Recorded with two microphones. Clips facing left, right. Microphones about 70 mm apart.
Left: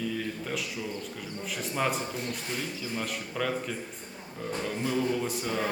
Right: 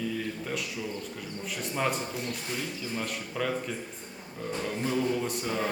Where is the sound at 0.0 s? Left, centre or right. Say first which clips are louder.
Even; centre.